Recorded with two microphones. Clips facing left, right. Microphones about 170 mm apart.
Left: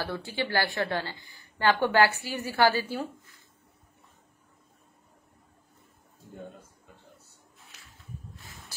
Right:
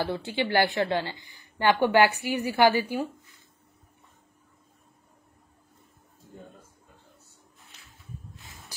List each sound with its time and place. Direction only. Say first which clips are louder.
0.0 s a woman's voice: right 4 dB; 20° right (ahead or behind)